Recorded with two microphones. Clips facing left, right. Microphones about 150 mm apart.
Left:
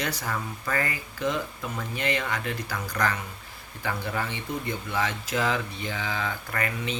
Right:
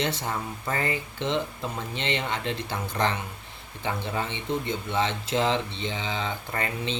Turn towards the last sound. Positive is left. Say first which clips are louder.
# even
turn(degrees=-25)  # may be behind; listen again after turning